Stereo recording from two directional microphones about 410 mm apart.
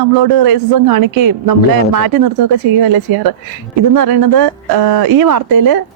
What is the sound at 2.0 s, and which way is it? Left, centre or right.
Speech, right.